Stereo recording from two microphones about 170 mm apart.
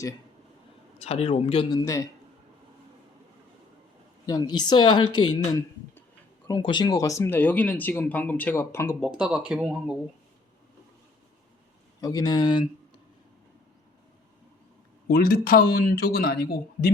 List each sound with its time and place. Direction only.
0.9 s a man's voice: 40° left (ahead or behind)
1.7 s speech: 20° left (ahead or behind)
4.3 s a woman's voice: 25° left (ahead or behind)
9.0 s speech: centre (ahead or behind)
11.9 s a woman's voice: 20° left (ahead or behind)
15.0 s speech: 65° left (ahead or behind)